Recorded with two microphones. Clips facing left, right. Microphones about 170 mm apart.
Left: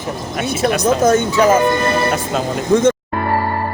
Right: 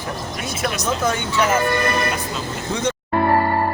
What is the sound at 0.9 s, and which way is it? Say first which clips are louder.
Speech: left 9 dB; 45° left (ahead or behind).